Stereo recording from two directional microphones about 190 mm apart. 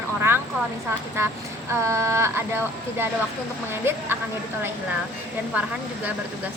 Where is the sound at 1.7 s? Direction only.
15° right (ahead or behind).